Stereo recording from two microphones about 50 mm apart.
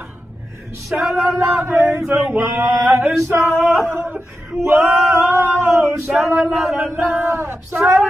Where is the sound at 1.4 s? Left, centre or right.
Right.